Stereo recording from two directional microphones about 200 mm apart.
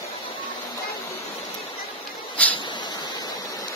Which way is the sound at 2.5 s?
25° left (ahead or behind).